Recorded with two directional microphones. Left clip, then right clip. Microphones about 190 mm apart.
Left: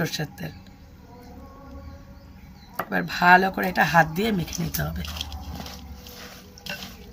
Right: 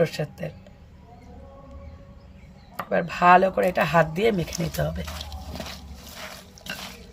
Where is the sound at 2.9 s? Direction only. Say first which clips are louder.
Even; 50° right (ahead or behind).